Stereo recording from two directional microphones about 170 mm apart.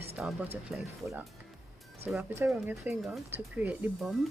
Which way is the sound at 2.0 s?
10° right (ahead or behind).